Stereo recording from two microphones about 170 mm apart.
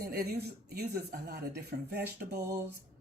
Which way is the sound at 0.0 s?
65° right (ahead or behind).